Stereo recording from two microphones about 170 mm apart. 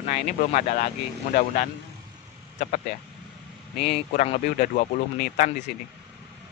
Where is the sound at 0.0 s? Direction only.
45° left (ahead or behind).